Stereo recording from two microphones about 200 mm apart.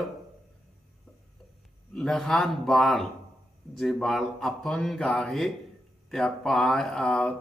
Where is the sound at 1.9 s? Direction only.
Centre (ahead or behind).